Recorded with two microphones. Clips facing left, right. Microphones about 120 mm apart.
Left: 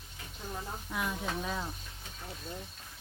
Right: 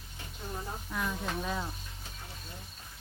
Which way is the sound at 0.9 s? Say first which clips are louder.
Even; 5° left (ahead or behind).